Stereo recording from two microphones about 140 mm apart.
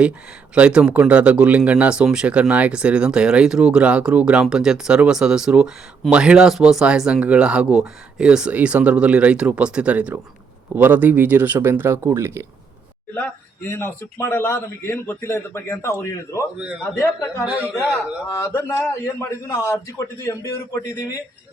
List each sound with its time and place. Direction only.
0.5 s speech: 10° right (ahead or behind)
13.7 s a man's voice: 20° left (ahead or behind)